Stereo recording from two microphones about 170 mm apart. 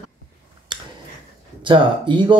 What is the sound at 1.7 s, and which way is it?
Speech, 30° right (ahead or behind).